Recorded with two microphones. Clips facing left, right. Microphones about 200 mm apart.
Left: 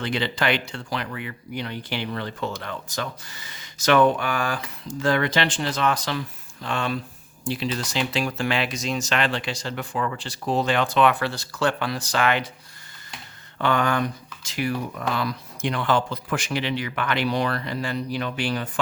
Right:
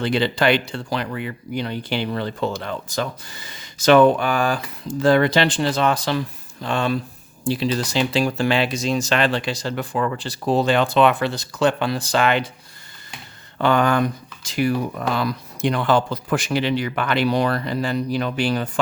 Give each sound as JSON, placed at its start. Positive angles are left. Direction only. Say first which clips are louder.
{"t": 0.0, "sound": "speech", "louder": "right 6 dB", "side_deg": -35}
{"t": 13.6, "sound": "speech", "louder": "right 5 dB", "side_deg": -35}